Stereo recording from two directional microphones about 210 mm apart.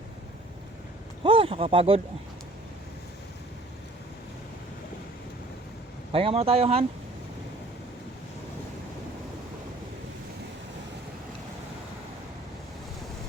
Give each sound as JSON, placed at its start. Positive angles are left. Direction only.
{"t": 1.2, "sound": "speech", "side_deg": -25}
{"t": 6.1, "sound": "speech", "side_deg": -25}